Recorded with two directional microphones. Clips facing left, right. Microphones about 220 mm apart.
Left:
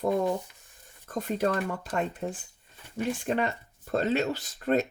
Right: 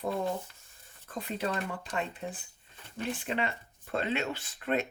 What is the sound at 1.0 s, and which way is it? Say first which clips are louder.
Speech: left 6 dB; 45° left (ahead or behind).